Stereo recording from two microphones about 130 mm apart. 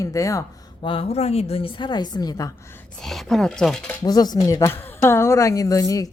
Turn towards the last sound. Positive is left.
turn(degrees=25)  # may be behind; listen again after turning